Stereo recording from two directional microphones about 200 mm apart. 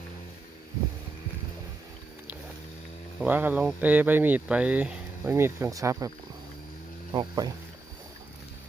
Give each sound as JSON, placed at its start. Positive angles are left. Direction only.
{"t": 3.2, "sound": "speech", "side_deg": -10}
{"t": 7.1, "sound": "speech", "side_deg": -20}